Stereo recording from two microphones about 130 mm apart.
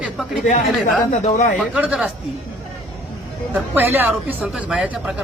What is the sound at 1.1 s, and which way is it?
Speech, 70° left (ahead or behind).